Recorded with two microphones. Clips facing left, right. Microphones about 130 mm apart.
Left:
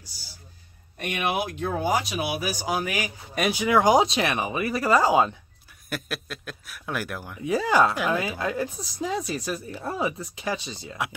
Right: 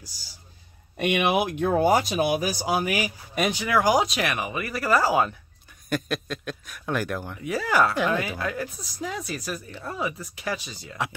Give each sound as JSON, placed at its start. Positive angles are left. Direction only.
{"t": 0.9, "sound": "speech", "side_deg": -80}
{"t": 1.6, "sound": "speech", "side_deg": -50}
{"t": 2.6, "sound": "speech", "side_deg": -15}
{"t": 3.5, "sound": "speech", "side_deg": 20}
{"t": 5.9, "sound": "speech", "side_deg": 5}
{"t": 7.4, "sound": "speech", "side_deg": 25}
{"t": 7.9, "sound": "speech", "side_deg": 10}
{"t": 8.4, "sound": "speech", "side_deg": 25}